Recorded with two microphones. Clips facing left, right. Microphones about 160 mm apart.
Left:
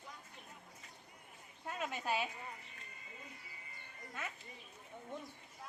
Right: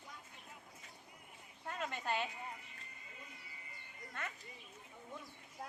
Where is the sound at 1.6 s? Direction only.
5° left (ahead or behind).